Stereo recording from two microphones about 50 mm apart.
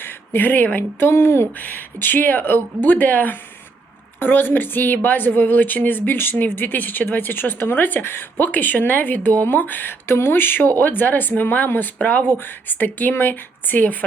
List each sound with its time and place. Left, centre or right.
0.0 s speech: left
1.1 s speech: left
1.5 s speech: left
10.2 s speech: left